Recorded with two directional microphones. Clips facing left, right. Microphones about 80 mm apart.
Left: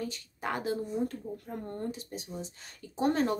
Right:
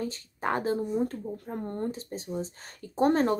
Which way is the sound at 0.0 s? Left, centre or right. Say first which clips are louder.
Right 4 dB; right.